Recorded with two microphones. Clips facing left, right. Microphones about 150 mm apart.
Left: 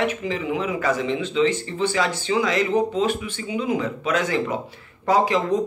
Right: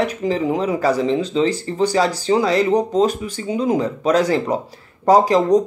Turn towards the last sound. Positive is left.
turn(degrees=-40)  # may be behind; listen again after turning